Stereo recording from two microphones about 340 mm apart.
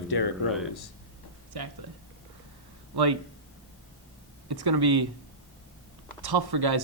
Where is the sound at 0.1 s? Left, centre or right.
Left.